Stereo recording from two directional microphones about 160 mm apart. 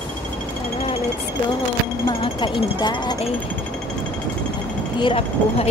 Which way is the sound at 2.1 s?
30° left (ahead or behind).